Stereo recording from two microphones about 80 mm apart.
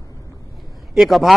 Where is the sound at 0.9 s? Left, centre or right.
Centre.